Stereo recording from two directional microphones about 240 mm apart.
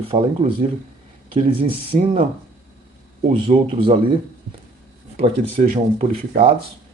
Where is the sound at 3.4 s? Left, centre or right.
Right.